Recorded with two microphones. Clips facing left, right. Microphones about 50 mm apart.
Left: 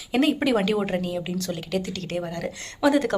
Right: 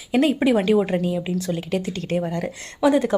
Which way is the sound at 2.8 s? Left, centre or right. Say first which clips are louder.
Right 2 dB; centre.